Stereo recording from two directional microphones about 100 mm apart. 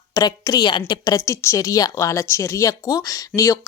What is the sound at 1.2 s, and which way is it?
Speech, 30° left (ahead or behind).